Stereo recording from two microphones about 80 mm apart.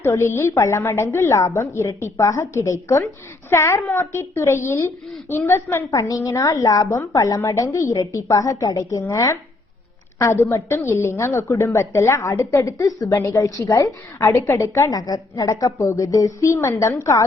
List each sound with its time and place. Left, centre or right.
0.0 s a woman's voice: left
5.9 s a woman's voice: left